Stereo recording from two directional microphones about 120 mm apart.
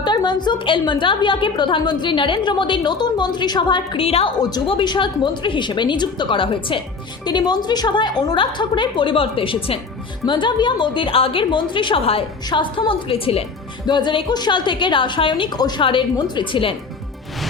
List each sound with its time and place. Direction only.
0.0 s a woman's voice: 40° left (ahead or behind)
4.4 s a woman's voice: 35° left (ahead or behind); by 12.2 s 50° left (ahead or behind)
12.5 s a woman's voice: 40° left (ahead or behind)
13.8 s a woman's voice: 40° left (ahead or behind)